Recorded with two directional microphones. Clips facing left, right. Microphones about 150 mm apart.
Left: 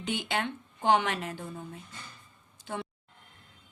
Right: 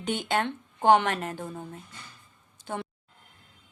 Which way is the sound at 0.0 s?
50° right (ahead or behind).